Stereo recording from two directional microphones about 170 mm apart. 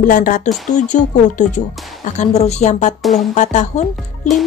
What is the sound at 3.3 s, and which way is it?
Speech, 45° left (ahead or behind).